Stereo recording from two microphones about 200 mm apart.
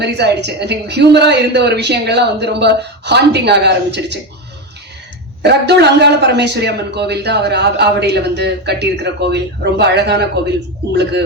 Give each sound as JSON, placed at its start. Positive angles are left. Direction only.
{"t": 0.0, "sound": "a man's voice", "side_deg": -55}
{"t": 5.4, "sound": "a man's voice", "side_deg": -55}